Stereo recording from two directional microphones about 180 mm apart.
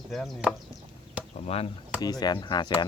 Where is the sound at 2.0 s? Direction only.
20° left (ahead or behind).